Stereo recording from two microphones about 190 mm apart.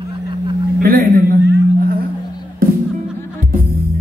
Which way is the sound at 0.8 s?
50° right (ahead or behind).